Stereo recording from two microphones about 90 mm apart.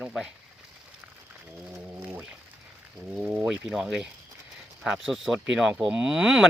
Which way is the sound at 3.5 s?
5° right (ahead or behind).